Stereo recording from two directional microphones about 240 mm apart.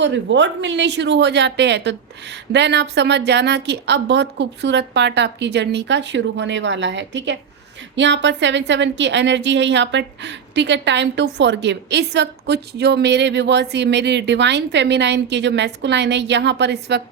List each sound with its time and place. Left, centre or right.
0.0 s a woman's voice: right